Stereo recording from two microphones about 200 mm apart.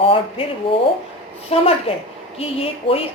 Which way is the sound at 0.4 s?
25° left (ahead or behind).